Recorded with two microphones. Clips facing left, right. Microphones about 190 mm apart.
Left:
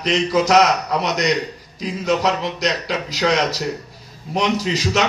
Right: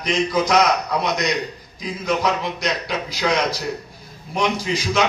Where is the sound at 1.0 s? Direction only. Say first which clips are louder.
Left 2 dB; 40° left (ahead or behind).